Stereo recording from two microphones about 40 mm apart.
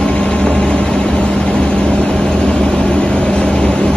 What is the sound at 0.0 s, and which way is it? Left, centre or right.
Vehicle, left.